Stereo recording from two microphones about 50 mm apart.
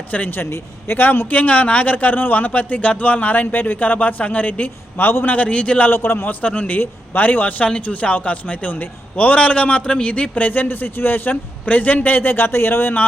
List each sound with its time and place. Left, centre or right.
0.3 s speech: left
1.3 s a man's voice: left
5.8 s speech: left
6.4 s a man's voice: left
7.6 s a man's voice: left